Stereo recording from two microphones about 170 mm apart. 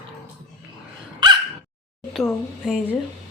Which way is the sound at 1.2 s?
25° right (ahead or behind).